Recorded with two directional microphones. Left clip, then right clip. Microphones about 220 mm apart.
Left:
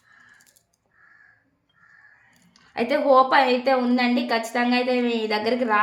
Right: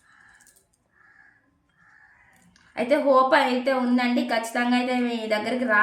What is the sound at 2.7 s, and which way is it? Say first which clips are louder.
A woman's voice: left 2 dB; 50° left (ahead or behind).